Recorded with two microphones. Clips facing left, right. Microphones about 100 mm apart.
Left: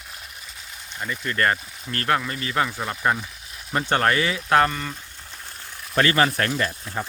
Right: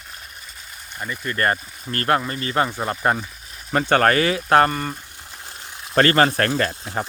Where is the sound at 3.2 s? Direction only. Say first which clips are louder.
Right 3 dB; centre (ahead or behind).